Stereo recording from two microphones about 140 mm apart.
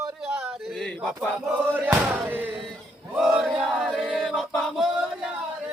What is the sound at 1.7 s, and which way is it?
Music, 10° right (ahead or behind).